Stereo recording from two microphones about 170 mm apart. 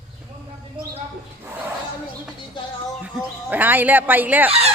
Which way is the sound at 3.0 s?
10° right (ahead or behind).